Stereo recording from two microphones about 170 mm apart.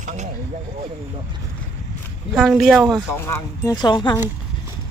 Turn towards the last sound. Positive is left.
turn(degrees=25)  # may be behind; listen again after turning